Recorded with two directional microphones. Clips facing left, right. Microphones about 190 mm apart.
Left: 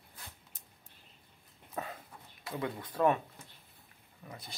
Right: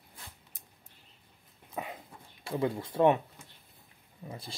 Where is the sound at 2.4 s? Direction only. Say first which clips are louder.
Right 6 dB; 25° right (ahead or behind).